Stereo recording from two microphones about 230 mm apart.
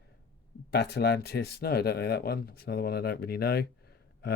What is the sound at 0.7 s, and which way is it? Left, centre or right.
Speech, left.